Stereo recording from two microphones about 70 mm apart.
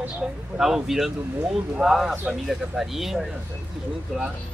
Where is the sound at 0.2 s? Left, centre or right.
Centre.